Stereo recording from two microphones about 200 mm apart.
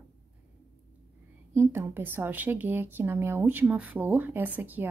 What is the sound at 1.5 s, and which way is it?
A woman's voice, 10° right (ahead or behind).